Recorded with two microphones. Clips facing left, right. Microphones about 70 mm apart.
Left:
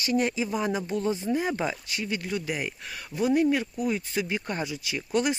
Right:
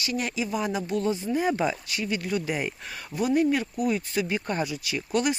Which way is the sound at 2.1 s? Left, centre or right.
Centre.